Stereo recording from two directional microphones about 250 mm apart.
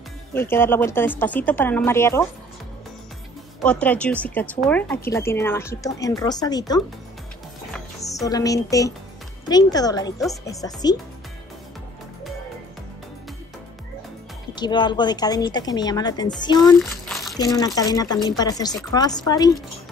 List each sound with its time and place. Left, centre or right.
0.3 s speech: centre
3.6 s speech: centre
8.0 s speech: centre
14.5 s speech: centre
16.9 s crumpling: centre
17.4 s speech: centre